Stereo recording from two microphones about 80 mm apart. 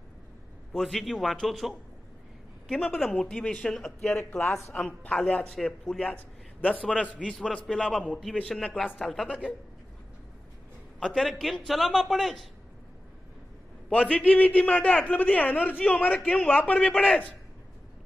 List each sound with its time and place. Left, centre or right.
0.7 s a man's voice: centre
11.0 s a man's voice: centre
11.6 s a man's voice: centre
13.8 s a man's voice: centre